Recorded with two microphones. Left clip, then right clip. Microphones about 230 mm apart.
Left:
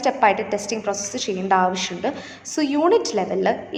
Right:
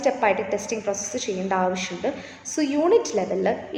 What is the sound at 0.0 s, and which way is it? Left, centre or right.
A woman's voice, left.